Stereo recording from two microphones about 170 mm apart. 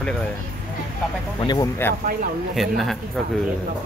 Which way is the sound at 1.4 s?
25° left (ahead or behind).